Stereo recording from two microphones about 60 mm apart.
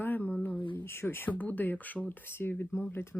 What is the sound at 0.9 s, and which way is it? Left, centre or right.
Speech, left.